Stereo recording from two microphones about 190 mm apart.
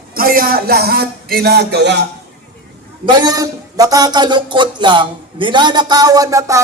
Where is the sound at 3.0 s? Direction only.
25° right (ahead or behind).